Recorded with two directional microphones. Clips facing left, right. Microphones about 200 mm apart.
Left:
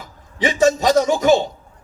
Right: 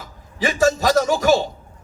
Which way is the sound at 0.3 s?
20° left (ahead or behind).